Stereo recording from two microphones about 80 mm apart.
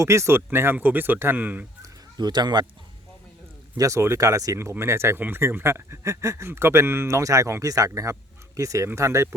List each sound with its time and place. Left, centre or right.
0.0 s speech: right
1.8 s fowl: right
3.8 s speech: right